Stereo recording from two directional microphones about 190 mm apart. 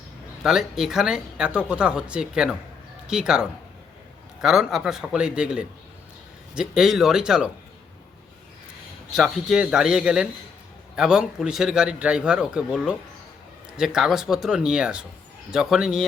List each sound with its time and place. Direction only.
0.4 s speech: centre (ahead or behind)
9.1 s speech: centre (ahead or behind)